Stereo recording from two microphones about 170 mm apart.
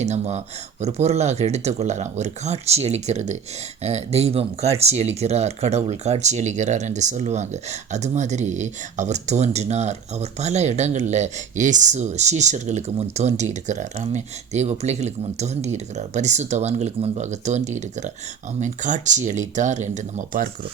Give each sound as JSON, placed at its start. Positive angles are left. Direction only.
{"t": 0.0, "sound": "speech", "side_deg": -40}